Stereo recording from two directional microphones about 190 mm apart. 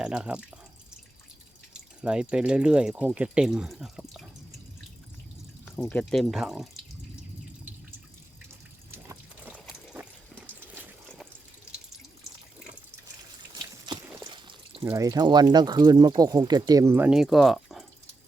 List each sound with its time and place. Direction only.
0.0 s speech: 5° right (ahead or behind)
1.7 s speech: 5° right (ahead or behind)
5.6 s speech: 5° left (ahead or behind)
8.9 s water: 10° right (ahead or behind)
13.6 s water: 25° right (ahead or behind)
14.8 s speech: 15° right (ahead or behind); by 17.8 s centre (ahead or behind)